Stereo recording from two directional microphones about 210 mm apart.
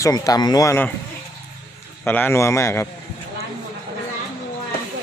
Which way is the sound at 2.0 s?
10° left (ahead or behind).